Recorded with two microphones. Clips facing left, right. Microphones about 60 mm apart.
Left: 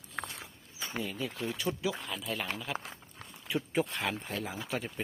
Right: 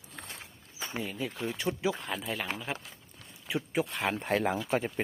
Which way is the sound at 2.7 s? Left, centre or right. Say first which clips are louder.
Left 2 dB; left.